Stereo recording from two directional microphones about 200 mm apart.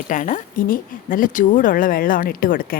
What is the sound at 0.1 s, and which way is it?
Speech, 40° left (ahead or behind).